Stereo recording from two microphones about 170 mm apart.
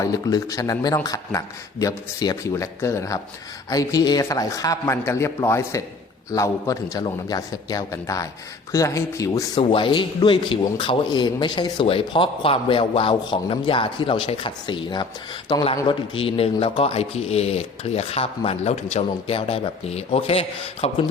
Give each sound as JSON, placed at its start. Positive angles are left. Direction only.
{"t": 0.0, "sound": "speech", "side_deg": 20}
{"t": 9.6, "sound": "a man's voice", "side_deg": 30}